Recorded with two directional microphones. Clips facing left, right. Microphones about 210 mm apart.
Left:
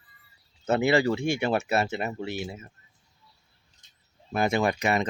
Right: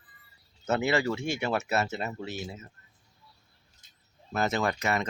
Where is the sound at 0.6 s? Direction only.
15° left (ahead or behind).